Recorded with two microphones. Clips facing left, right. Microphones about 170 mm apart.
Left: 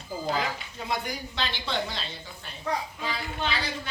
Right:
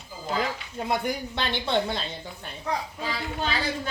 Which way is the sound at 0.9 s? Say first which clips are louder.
Right 4 dB; 55° right (ahead or behind).